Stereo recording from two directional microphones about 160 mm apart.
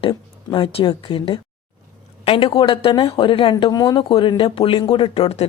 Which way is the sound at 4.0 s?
35° left (ahead or behind).